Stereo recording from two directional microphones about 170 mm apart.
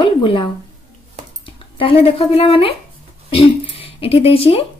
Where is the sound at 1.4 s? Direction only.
30° left (ahead or behind).